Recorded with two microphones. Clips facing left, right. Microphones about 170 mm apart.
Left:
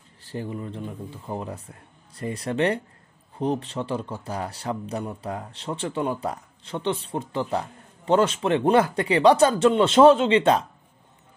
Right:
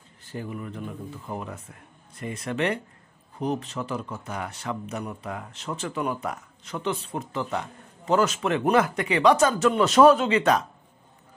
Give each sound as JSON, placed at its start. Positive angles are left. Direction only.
{"t": 0.2, "sound": "a man's voice", "side_deg": 30}